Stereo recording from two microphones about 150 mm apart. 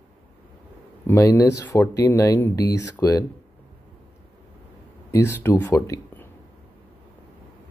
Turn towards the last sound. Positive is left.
turn(degrees=15)  # may be behind; listen again after turning